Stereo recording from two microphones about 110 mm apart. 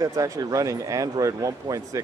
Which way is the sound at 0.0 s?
30° right (ahead or behind).